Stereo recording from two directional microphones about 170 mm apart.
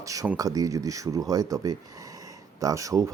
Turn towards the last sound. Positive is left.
turn(degrees=-20)  # may be behind; listen again after turning